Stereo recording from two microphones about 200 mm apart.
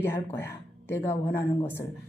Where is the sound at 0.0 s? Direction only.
10° left (ahead or behind).